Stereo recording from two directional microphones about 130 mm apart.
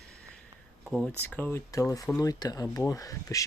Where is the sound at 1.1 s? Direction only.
15° left (ahead or behind).